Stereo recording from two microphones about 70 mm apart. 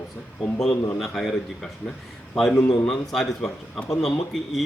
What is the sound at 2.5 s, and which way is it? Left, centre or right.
Speech, left.